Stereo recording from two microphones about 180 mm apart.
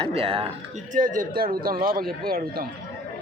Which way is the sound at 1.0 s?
45° right (ahead or behind).